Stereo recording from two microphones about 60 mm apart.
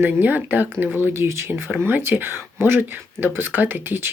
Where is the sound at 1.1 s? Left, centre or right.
Right.